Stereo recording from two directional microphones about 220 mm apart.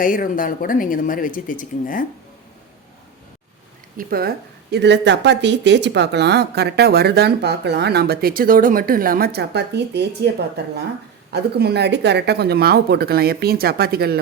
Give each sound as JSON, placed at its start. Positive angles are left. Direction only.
{"t": 0.0, "sound": "speech", "side_deg": 40}
{"t": 3.9, "sound": "speech", "side_deg": -45}